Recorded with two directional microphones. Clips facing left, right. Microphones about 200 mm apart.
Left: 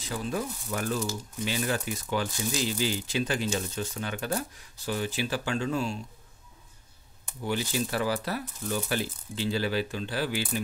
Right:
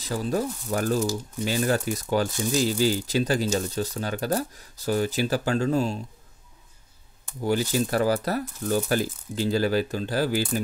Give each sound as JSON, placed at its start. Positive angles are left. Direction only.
{"t": 0.0, "sound": "speech", "side_deg": -40}
{"t": 7.4, "sound": "speech", "side_deg": -40}